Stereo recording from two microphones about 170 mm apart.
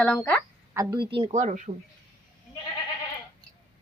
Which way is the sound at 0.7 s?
25° right (ahead or behind).